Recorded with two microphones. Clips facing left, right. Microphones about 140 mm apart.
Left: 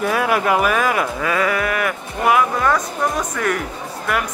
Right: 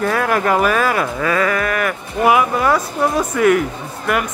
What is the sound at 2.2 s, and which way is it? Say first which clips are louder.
Speech: right 2 dB; 10° right (ahead or behind).